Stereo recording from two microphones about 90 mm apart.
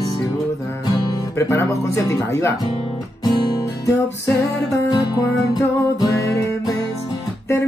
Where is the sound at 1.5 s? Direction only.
30° left (ahead or behind).